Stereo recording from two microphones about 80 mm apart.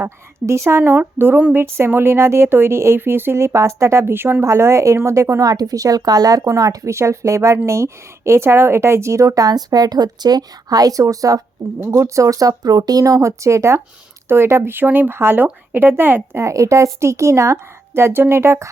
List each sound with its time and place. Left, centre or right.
0.3 s a woman's voice: right
13.1 s a woman's voice: right
16.4 s a woman's voice: right